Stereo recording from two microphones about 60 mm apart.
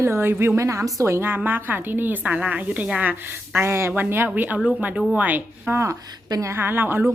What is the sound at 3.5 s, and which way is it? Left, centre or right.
Speech, right.